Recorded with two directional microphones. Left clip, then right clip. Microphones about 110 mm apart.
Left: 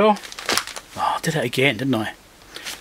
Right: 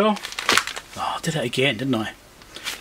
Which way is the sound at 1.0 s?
30° left (ahead or behind).